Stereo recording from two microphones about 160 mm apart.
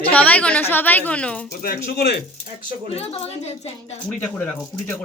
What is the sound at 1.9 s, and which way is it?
Speech, 85° left.